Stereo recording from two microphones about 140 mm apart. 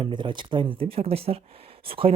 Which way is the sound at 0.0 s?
35° right (ahead or behind).